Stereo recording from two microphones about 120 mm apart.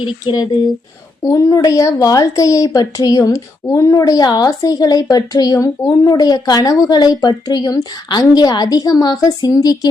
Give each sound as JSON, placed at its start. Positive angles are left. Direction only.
{"t": 0.0, "sound": "a woman's voice", "side_deg": 40}
{"t": 1.2, "sound": "a woman's voice", "side_deg": 30}